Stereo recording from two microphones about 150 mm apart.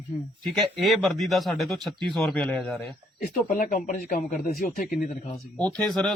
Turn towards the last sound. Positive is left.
turn(degrees=5)  # may be behind; listen again after turning